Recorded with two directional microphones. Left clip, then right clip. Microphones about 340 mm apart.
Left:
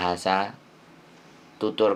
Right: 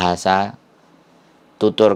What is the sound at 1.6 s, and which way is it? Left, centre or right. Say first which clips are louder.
Speech: right 9 dB; right.